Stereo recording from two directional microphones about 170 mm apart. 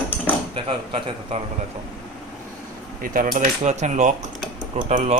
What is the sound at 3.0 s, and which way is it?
Cutlery, 55° right (ahead or behind).